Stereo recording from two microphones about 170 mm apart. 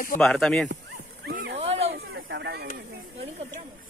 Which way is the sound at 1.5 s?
35° right (ahead or behind).